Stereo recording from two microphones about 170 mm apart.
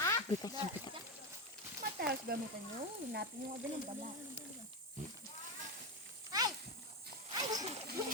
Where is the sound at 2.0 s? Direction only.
65° right (ahead or behind).